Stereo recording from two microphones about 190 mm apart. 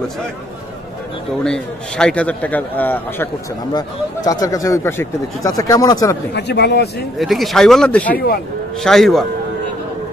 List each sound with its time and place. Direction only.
1.4 s speech: 5° left (ahead or behind)
3.7 s speech: 20° left (ahead or behind)
6.3 s speech: 60° left (ahead or behind)
7.2 s speech: centre (ahead or behind)